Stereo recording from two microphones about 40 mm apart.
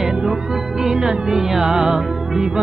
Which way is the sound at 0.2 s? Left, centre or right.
Centre.